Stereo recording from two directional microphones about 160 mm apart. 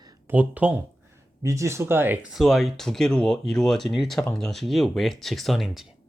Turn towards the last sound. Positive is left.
turn(degrees=0)  # may be behind; listen again after turning